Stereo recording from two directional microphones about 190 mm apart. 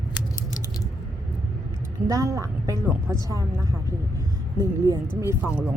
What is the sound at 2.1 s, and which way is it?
Speech, 15° right (ahead or behind).